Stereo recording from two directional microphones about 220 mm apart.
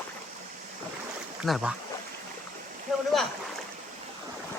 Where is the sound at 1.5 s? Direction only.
Centre (ahead or behind).